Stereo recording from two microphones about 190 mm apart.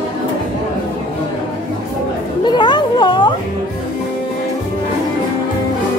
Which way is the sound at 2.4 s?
25° left (ahead or behind).